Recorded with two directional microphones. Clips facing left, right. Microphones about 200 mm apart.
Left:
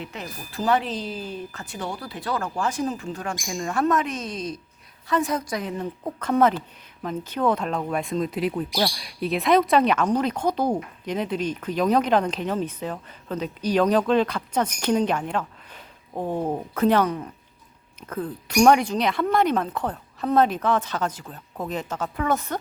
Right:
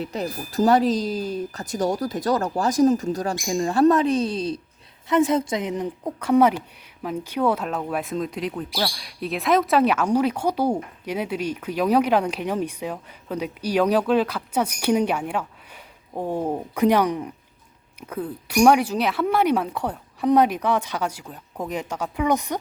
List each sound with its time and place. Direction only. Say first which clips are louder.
0.0 s speech: right 7 dB; 40° right (ahead or behind); by 22.6 s 15° right (ahead or behind)